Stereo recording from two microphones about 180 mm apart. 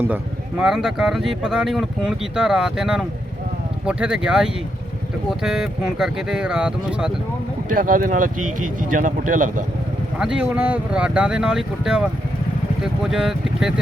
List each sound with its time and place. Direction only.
0.6 s speech: 5° right (ahead or behind)
7.9 s speech: 50° right (ahead or behind)
10.2 s speech: 5° right (ahead or behind)